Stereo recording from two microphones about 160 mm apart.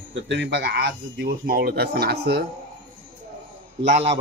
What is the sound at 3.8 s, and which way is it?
Speech, 45° right (ahead or behind).